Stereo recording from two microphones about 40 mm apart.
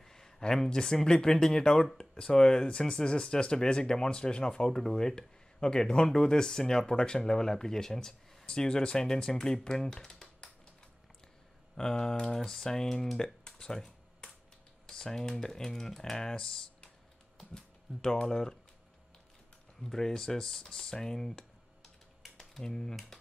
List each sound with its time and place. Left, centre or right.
0.0 s speech: centre
11.7 s speech: centre
19.8 s speech: centre